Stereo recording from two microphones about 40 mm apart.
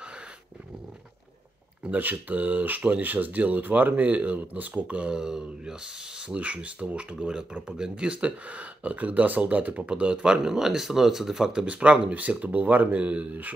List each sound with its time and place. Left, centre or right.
1.9 s speech: right
5.1 s speech: centre
6.2 s speech: right
9.8 s speech: right; by 11.5 s centre
11.5 s speech: right